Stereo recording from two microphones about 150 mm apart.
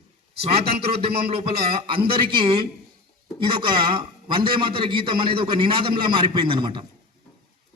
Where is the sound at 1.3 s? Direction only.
35° right (ahead or behind).